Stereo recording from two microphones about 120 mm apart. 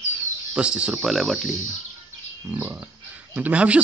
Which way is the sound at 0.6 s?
10° right (ahead or behind).